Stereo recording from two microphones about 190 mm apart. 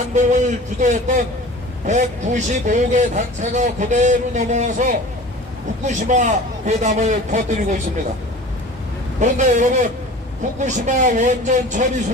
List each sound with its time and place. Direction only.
0.1 s speech: 40° right (ahead or behind)
9.2 s speech: 40° right (ahead or behind)